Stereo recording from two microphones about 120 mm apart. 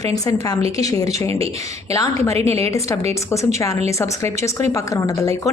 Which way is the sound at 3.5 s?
25° left (ahead or behind).